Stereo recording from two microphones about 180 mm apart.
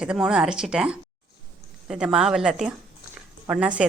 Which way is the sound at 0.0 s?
5° right (ahead or behind).